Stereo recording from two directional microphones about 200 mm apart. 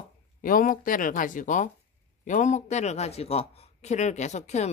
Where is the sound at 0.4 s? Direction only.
45° left (ahead or behind).